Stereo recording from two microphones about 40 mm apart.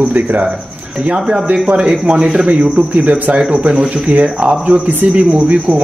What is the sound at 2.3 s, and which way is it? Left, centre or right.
Speech, right.